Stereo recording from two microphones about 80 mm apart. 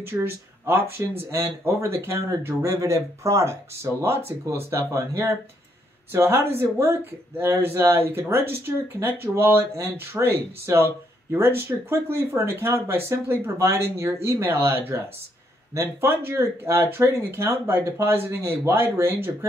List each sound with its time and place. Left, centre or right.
0.0 s speech: right